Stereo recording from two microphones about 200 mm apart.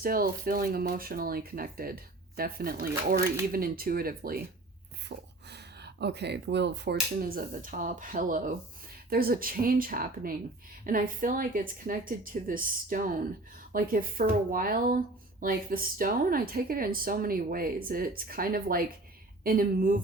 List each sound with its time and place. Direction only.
0.0 s a woman's voice: 45° right (ahead or behind)
5.0 s a sound: 55° right (ahead or behind)
7.2 s a woman's voice: 45° right (ahead or behind)